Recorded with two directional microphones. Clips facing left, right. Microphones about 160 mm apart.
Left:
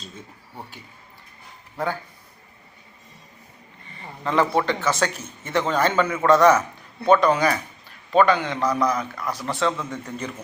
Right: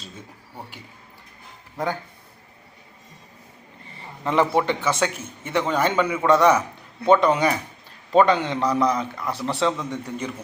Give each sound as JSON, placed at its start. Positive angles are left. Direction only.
{"t": 1.7, "sound": "a man's voice", "side_deg": -15}
{"t": 4.2, "sound": "a man's voice", "side_deg": -15}